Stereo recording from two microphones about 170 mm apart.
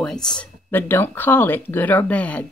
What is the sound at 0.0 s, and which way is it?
Speech, 5° left (ahead or behind).